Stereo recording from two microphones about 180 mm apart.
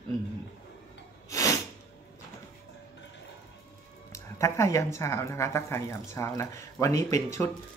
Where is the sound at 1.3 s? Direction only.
20° left (ahead or behind).